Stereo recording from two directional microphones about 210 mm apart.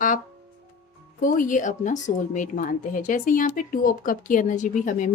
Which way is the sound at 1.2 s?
40° left (ahead or behind).